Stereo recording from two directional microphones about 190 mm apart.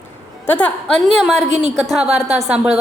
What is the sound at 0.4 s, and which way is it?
A woman's voice, 10° left (ahead or behind).